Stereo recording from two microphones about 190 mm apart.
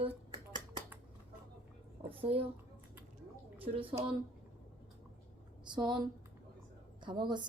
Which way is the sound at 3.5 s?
30° right (ahead or behind).